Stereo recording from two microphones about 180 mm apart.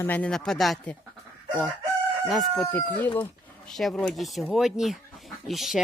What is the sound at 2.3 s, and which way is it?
Speech, centre (ahead or behind).